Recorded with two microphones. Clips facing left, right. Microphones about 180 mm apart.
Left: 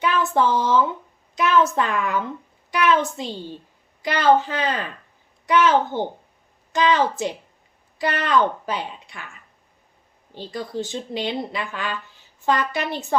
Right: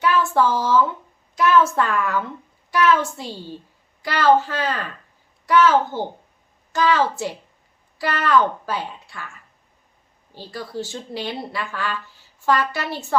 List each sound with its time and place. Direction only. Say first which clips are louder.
0.0 s speech: right 1 dB; 20° left (ahead or behind)
10.3 s speech: left 2 dB; 20° left (ahead or behind)